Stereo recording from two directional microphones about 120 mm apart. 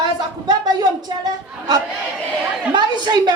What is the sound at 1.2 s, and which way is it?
A woman's voice, 35° right (ahead or behind).